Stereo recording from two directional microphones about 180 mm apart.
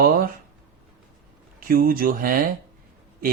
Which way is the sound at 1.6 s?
55° right (ahead or behind).